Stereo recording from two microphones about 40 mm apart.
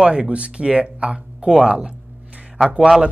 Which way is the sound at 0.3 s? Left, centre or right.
Right.